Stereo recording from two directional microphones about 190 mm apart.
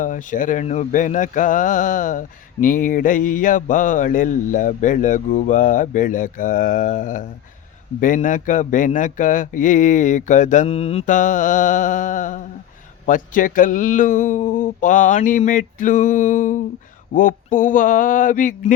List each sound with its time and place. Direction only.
0.0 s mantra: 45° left (ahead or behind)
8.0 s speech: 45° left (ahead or behind)
13.1 s mantra: 45° left (ahead or behind)